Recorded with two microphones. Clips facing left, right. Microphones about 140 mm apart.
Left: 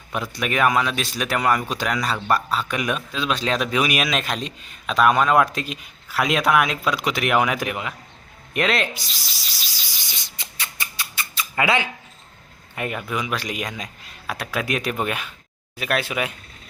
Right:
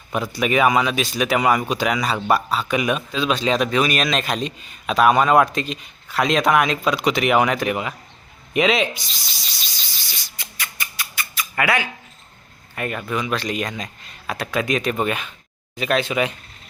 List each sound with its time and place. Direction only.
0.1 s speech: centre (ahead or behind)
8.5 s rub: centre (ahead or behind); by 11.9 s 25° left (ahead or behind)
12.7 s speech: 15° left (ahead or behind)